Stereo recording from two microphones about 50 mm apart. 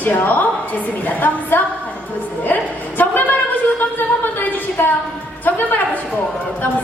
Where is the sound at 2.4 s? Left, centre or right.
Left.